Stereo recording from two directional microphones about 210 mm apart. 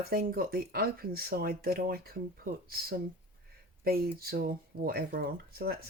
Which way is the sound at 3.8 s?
45° right (ahead or behind).